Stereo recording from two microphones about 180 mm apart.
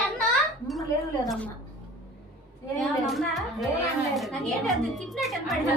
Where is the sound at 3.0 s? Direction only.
Centre (ahead or behind).